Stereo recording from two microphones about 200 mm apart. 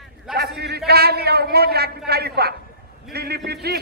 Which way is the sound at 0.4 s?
55° right (ahead or behind).